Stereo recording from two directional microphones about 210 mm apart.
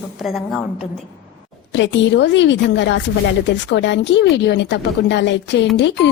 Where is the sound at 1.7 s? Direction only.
60° left (ahead or behind).